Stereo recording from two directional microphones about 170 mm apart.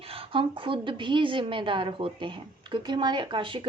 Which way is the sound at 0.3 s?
30° right (ahead or behind).